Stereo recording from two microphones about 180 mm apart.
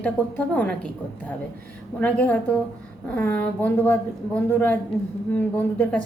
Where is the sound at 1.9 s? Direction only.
10° left (ahead or behind).